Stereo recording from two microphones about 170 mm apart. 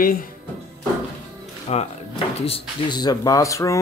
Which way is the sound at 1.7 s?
40° left (ahead or behind).